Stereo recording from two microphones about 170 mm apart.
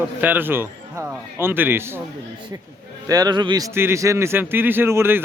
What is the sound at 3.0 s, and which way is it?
Speech, 20° right (ahead or behind).